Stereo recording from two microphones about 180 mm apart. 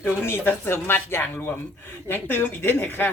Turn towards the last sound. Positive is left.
turn(degrees=10)  # may be behind; listen again after turning